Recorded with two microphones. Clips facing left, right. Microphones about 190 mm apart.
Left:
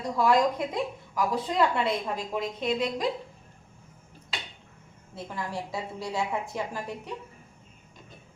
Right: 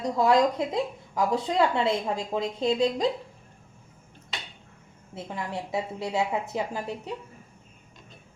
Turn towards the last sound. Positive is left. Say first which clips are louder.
# right 2 dB
turn(degrees=-25)  # may be behind; listen again after turning